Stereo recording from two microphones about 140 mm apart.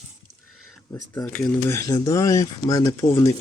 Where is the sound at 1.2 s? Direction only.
10° left (ahead or behind).